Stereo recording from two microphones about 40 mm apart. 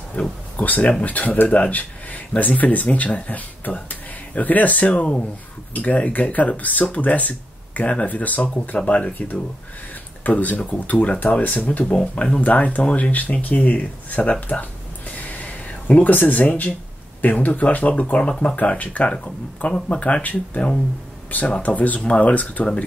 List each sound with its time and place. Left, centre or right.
0.2 s speech: left
11.8 s speech: centre
12.4 s speech: left
14.5 s a sound: left
17.2 s speech: left
19.7 s speech: left